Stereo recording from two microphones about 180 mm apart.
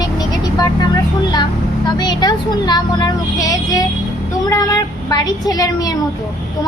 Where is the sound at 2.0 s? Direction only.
25° left (ahead or behind).